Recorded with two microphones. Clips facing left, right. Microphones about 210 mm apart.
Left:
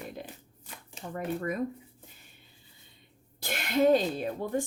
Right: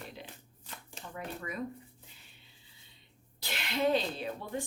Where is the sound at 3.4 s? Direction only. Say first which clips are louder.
Left 7 dB; 50° left (ahead or behind).